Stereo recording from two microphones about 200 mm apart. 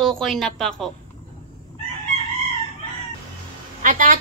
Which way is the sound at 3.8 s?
40° right (ahead or behind).